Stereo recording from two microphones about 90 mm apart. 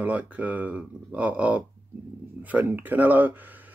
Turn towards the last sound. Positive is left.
turn(degrees=-20)  # may be behind; listen again after turning